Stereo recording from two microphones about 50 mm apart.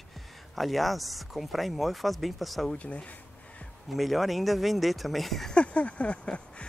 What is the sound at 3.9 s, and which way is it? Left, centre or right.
Speech, centre.